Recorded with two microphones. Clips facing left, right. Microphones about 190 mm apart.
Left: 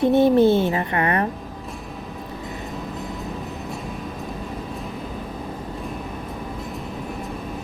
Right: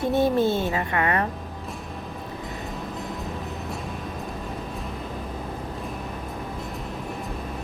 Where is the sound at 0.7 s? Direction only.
30° left (ahead or behind).